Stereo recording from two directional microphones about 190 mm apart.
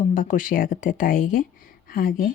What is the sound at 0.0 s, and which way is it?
A woman's voice, 45° left (ahead or behind).